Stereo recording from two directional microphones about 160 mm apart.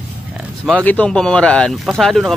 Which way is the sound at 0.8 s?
10° left (ahead or behind).